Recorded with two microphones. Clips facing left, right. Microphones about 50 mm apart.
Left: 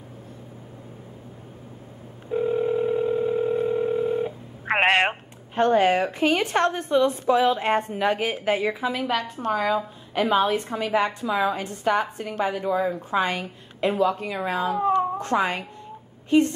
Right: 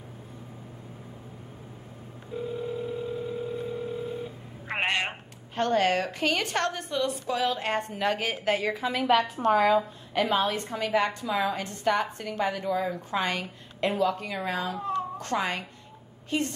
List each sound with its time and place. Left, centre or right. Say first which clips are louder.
2.3 s telephone: left 10 dB; left
5.5 s a woman's voice: left 5 dB; centre
14.8 s cat: left 9 dB; left
15.1 s a woman's voice: left 5 dB; centre